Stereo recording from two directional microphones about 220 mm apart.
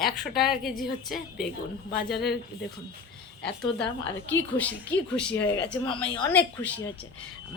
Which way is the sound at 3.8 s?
60° left (ahead or behind).